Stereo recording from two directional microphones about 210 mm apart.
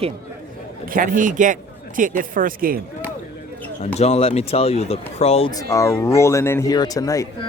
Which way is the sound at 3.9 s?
30° left (ahead or behind).